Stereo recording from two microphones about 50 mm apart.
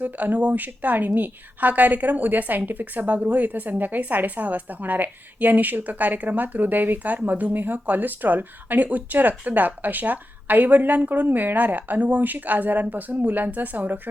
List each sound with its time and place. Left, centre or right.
0.0 s a woman's voice: right